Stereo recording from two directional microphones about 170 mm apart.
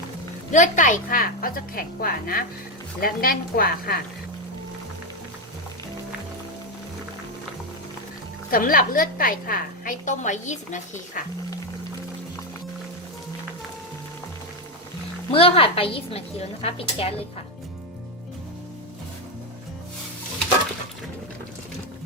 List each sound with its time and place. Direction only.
0.5 s a woman's voice: 50° left (ahead or behind)
8.4 s a woman's voice: 55° left (ahead or behind)
15.3 s a woman's voice: 35° left (ahead or behind)